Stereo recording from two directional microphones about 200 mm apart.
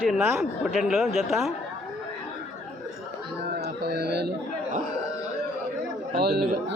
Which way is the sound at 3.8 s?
55° right (ahead or behind).